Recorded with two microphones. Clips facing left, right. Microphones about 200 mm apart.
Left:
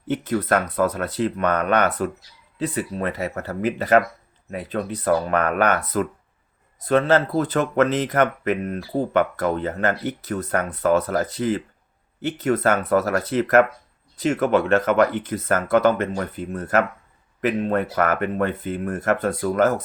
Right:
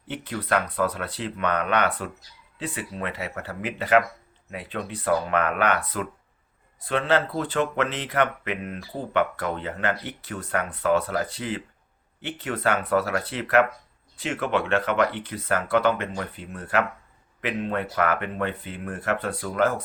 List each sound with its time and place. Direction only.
0.1 s speech: 45° left (ahead or behind)